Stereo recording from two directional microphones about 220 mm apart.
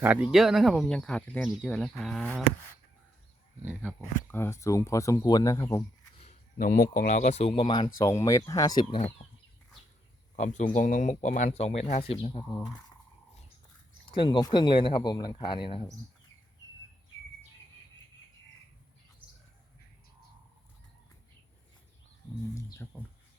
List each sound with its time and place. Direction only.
0.0 s speech: 5° right (ahead or behind)
3.6 s speech: 5° right (ahead or behind)
4.3 s speech: 10° left (ahead or behind)
6.6 s speech: 40° left (ahead or behind); by 9.1 s 25° left (ahead or behind)
10.3 s speech: 35° left (ahead or behind)
14.2 s speech: 20° left (ahead or behind)
22.8 s speech: 10° left (ahead or behind)